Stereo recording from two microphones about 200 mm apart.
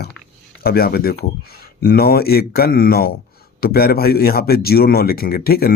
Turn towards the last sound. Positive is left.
turn(degrees=50)  # may be behind; listen again after turning